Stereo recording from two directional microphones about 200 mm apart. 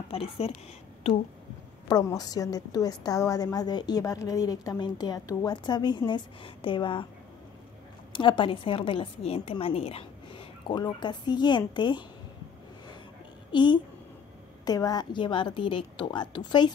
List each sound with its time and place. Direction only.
0.1 s a woman's voice: 30° left (ahead or behind)
1.9 s a woman's voice: 20° left (ahead or behind)
8.1 s a woman's voice: 25° left (ahead or behind)
13.5 s a woman's voice: 25° left (ahead or behind)